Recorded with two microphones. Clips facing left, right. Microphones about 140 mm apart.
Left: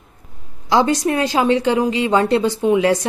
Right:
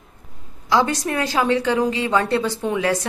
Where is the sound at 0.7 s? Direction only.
20° left (ahead or behind).